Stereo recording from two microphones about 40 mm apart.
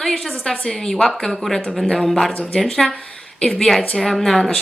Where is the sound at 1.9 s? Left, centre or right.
Centre.